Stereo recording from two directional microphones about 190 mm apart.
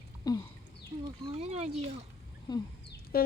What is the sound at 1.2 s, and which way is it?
Speech, 35° right (ahead or behind).